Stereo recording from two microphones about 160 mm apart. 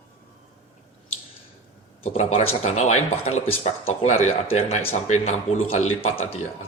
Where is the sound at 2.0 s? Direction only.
40° left (ahead or behind).